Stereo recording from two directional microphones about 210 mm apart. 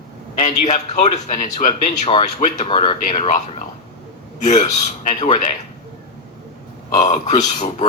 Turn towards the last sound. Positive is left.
turn(degrees=35)  # may be behind; listen again after turning